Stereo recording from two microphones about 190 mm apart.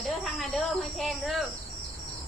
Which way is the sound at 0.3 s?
Centre (ahead or behind).